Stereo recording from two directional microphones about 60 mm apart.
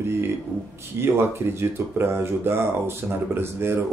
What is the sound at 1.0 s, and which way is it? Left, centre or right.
Speech, right.